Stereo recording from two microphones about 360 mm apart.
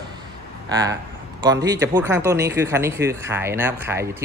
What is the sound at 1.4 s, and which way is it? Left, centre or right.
A man's voice, centre.